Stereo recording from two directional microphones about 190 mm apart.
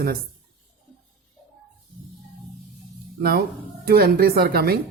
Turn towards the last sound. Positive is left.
turn(degrees=-55)  # may be behind; listen again after turning